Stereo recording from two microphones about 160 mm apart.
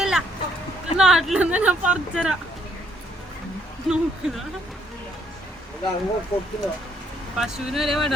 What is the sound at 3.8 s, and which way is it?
Speech, 5° right (ahead or behind).